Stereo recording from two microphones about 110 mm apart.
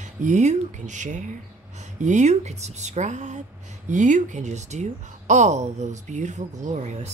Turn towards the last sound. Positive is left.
turn(degrees=-85)